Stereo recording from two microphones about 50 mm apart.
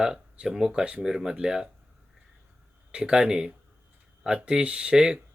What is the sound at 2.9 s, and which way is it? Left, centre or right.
Speech, centre.